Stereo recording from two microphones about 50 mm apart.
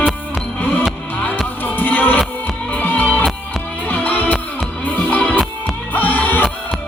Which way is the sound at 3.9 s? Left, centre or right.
Left.